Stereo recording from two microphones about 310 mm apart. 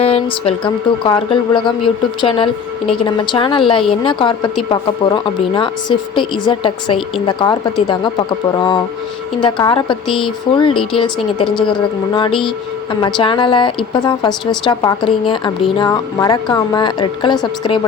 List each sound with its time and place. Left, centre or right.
0.0 s a woman's voice: centre
9.4 s a woman's voice: centre